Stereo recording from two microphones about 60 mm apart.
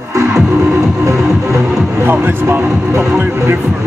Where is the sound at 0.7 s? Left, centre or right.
Right.